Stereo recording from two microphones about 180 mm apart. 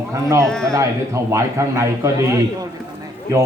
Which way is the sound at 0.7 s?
15° right (ahead or behind).